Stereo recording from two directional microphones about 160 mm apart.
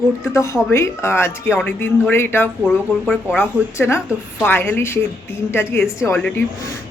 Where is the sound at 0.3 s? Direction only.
20° left (ahead or behind).